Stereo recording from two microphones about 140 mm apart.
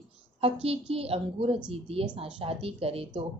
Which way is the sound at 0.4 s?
45° right (ahead or behind).